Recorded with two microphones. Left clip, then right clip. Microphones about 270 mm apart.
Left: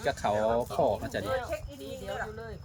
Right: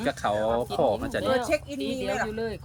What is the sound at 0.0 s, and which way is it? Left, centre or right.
Speech, centre.